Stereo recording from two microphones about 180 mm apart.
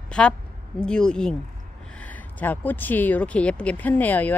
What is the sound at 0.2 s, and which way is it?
Speech, 5° left (ahead or behind).